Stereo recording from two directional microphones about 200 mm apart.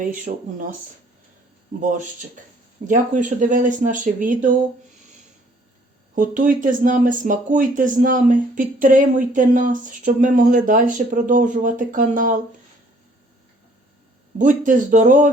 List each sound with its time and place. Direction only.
0.0 s speech: 40° right (ahead or behind)
1.8 s speech: 40° right (ahead or behind)
6.1 s speech: 40° right (ahead or behind)
14.3 s speech: 40° right (ahead or behind)